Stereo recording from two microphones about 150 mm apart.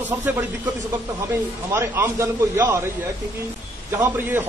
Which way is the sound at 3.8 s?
15° right (ahead or behind).